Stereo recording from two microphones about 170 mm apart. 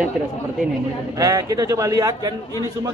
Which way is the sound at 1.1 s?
20° right (ahead or behind).